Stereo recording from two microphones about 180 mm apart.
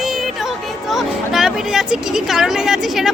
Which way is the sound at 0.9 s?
Centre (ahead or behind).